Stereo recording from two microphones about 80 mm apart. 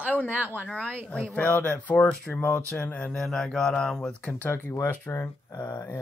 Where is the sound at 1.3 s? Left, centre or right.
Centre.